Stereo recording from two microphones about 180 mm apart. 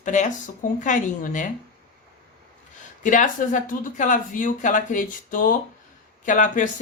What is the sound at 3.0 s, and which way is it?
Speech, 45° left (ahead or behind).